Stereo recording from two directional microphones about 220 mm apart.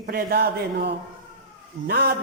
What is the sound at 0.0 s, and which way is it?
A man's voice, 40° right (ahead or behind).